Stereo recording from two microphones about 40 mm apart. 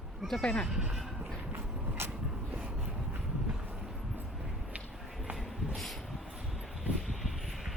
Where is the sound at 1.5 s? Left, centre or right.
Right.